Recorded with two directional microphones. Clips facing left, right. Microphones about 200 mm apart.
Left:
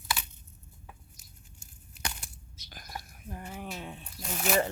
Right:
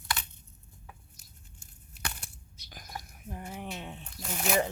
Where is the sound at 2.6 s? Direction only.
15° right (ahead or behind).